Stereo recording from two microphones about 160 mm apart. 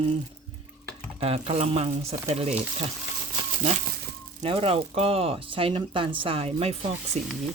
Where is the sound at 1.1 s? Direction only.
40° right (ahead or behind).